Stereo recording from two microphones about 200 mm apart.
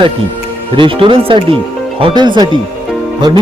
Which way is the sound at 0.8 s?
25° right (ahead or behind).